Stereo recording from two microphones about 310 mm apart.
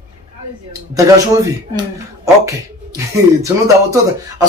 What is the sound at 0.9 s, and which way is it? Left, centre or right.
Speech, centre.